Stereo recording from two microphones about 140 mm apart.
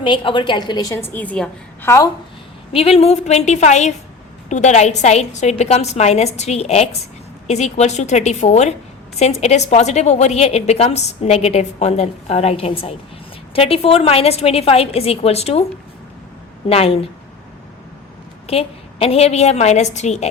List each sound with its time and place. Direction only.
0.0 s a woman's voice: 35° left (ahead or behind); by 2.0 s 15° left (ahead or behind)
2.7 s a woman's voice: 45° left (ahead or behind)
16.6 s a woman's voice: 45° left (ahead or behind)
18.4 s a woman's voice: 45° left (ahead or behind)